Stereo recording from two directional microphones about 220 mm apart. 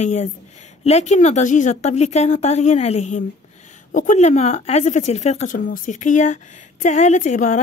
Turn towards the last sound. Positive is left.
turn(degrees=35)  # may be behind; listen again after turning